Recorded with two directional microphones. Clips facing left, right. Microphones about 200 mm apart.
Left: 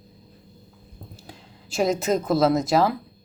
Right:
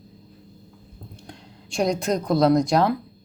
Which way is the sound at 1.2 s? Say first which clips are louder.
Right 2 dB; 5° left (ahead or behind).